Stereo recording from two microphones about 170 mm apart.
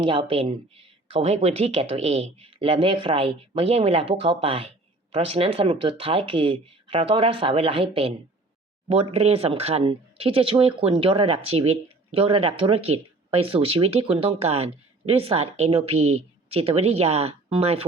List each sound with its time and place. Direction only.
0.0 s speech: 30° right (ahead or behind)